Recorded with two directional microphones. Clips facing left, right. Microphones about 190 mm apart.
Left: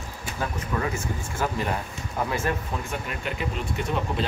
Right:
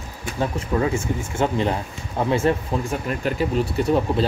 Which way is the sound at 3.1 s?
40° right (ahead or behind).